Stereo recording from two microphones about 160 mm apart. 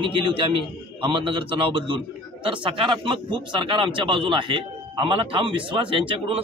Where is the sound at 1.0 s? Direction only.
35° right (ahead or behind).